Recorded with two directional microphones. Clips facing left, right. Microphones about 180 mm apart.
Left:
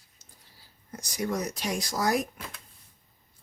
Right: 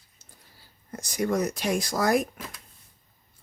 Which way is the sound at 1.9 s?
55° right (ahead or behind).